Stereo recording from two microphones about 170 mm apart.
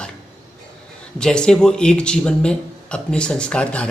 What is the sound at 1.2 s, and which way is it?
Speech, 5° left (ahead or behind).